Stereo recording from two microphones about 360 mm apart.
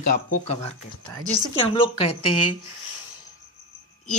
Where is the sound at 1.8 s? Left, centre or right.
Centre.